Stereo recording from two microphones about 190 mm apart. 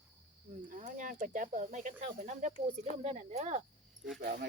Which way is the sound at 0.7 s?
45° right (ahead or behind).